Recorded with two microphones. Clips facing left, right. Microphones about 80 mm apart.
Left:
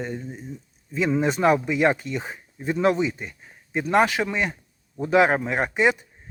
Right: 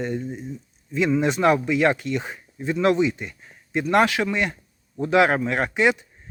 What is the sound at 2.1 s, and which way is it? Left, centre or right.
Speech, centre.